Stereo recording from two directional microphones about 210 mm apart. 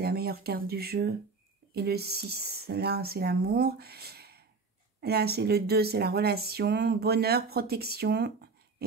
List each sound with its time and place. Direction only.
0.0 s speech: 50° right (ahead or behind)